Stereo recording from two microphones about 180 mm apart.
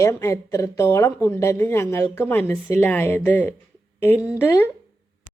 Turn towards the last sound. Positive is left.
turn(degrees=10)  # may be behind; listen again after turning